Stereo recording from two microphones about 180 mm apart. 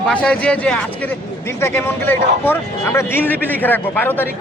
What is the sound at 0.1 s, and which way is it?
Speech, 5° left (ahead or behind).